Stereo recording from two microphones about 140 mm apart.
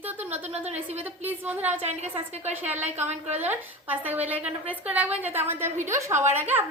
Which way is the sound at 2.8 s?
50° right (ahead or behind).